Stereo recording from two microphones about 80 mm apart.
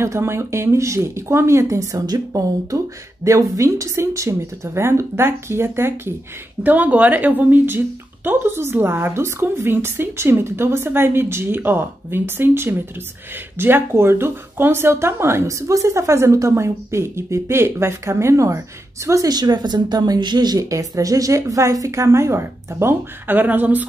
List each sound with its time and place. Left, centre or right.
0.0 s speech: right
6.6 s speech: right
19.3 s speech: right